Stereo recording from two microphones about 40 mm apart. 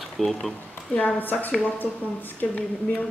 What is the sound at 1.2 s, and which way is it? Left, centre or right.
Speech, left.